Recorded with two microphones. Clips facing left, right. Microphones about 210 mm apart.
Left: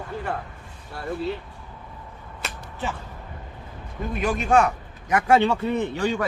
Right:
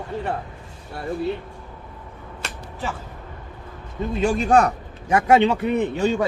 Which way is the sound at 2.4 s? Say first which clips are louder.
Even; centre (ahead or behind).